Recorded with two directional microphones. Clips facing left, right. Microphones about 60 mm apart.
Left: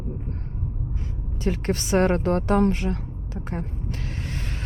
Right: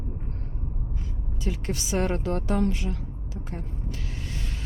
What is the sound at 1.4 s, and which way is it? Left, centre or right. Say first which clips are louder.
Speech: left 6 dB; left.